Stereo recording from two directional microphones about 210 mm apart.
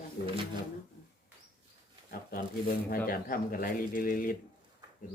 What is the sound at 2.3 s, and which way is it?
A man's voice, 45° left (ahead or behind).